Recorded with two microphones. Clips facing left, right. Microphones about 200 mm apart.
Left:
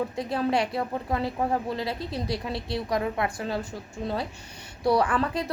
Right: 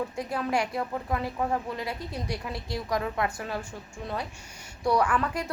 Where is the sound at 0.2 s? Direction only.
30° left (ahead or behind).